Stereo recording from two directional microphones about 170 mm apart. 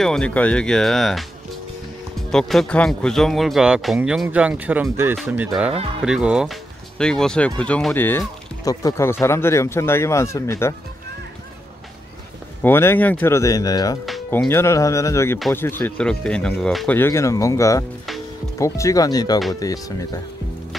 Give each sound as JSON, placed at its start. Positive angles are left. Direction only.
{"t": 0.0, "sound": "speech", "side_deg": 5}
{"t": 12.6, "sound": "speech", "side_deg": 10}